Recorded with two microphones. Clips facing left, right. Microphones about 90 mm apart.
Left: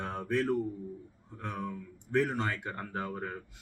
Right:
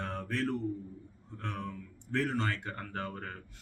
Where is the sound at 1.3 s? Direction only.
10° left (ahead or behind).